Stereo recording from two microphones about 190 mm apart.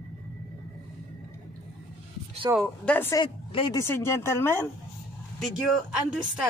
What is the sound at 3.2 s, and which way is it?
Speech, 25° left (ahead or behind).